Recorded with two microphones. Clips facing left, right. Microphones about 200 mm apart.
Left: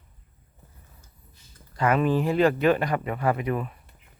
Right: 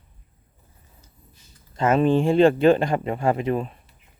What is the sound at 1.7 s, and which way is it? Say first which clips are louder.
Speech: right 4 dB; 25° right (ahead or behind).